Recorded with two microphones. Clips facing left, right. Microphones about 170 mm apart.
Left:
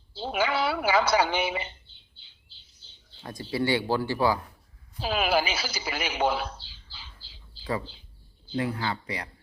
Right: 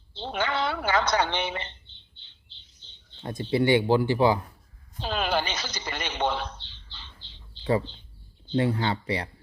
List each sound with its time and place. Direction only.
0.1 s a sound: 10° left (ahead or behind)
3.5 s speech: 20° right (ahead or behind)
4.9 s speech: 10° left (ahead or behind)
8.5 s speech: 30° right (ahead or behind)